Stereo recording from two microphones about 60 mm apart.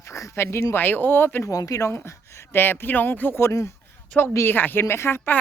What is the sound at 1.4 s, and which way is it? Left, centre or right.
Speech, left.